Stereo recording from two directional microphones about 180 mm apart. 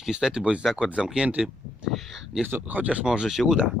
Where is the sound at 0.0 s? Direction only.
Centre (ahead or behind).